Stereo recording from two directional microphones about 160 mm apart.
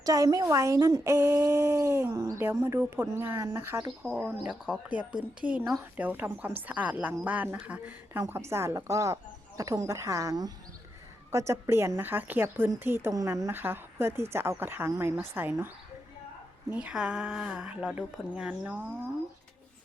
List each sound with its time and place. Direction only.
0.0 s a woman's voice: 20° right (ahead or behind)